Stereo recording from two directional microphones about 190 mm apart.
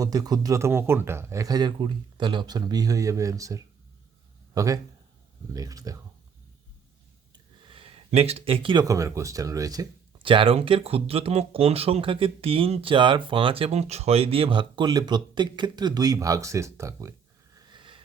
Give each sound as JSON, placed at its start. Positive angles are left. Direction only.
{"t": 0.0, "sound": "speech", "side_deg": -20}
{"t": 7.3, "sound": "speech", "side_deg": -25}